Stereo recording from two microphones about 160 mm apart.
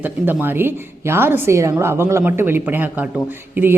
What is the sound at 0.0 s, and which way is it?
A man's voice, 10° right (ahead or behind).